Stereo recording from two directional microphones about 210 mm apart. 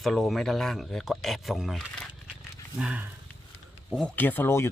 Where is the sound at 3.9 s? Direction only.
5° left (ahead or behind).